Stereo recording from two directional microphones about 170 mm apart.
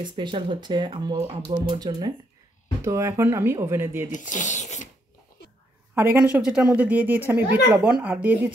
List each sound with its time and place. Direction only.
0.0 s speech: 30° right (ahead or behind)
4.1 s speech: 45° left (ahead or behind)
5.9 s speech: 10° right (ahead or behind)